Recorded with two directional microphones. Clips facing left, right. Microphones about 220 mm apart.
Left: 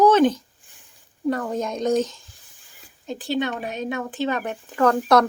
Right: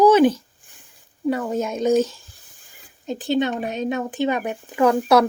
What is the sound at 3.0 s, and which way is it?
Speech, 20° right (ahead or behind).